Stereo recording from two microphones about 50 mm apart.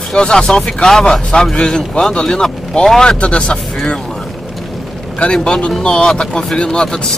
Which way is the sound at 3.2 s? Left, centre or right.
Left.